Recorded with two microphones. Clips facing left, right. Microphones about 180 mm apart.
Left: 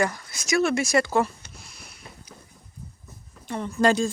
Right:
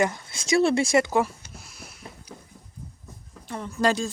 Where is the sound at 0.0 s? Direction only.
25° right (ahead or behind); by 2.0 s centre (ahead or behind).